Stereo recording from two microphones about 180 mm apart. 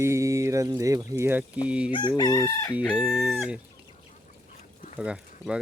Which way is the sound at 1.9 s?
25° left (ahead or behind).